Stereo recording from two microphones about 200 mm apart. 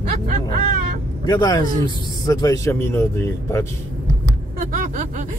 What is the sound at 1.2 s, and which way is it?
A man's voice, 20° left (ahead or behind).